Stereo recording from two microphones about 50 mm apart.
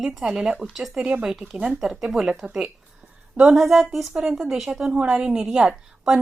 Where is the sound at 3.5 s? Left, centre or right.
Centre.